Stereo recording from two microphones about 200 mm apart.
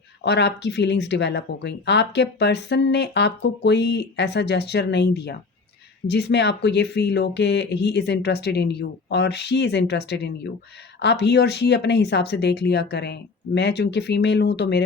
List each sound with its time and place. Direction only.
0.2 s speech: 55° left (ahead or behind)